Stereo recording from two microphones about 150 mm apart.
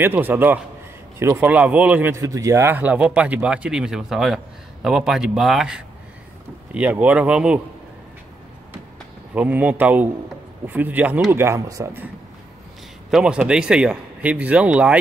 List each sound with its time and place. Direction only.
0.0 s a man's voice: 15° right (ahead or behind)
9.3 s speech: 10° right (ahead or behind)
13.1 s speech: 5° right (ahead or behind)